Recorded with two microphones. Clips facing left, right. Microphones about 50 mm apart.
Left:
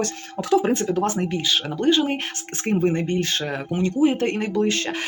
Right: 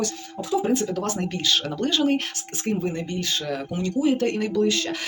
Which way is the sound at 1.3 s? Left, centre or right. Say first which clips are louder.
Left 1 dB; centre.